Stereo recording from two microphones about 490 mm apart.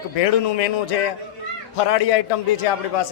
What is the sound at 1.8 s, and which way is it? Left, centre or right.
A man's voice, left.